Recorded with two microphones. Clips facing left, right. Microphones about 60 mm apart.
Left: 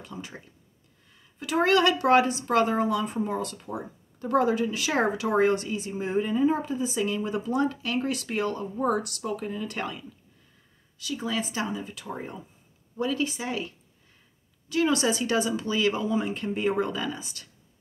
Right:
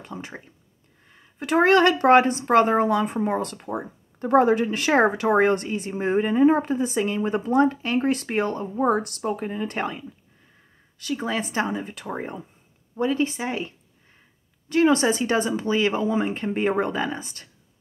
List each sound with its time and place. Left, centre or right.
0.0 s speech: right
12.9 s speech: right